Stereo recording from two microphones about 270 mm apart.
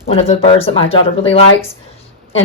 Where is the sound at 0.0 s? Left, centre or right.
Left.